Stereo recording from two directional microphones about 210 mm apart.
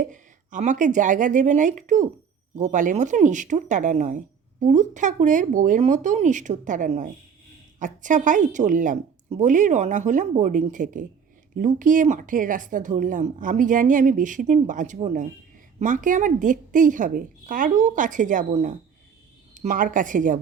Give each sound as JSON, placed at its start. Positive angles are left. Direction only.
{"t": 0.1, "sound": "speech", "side_deg": -35}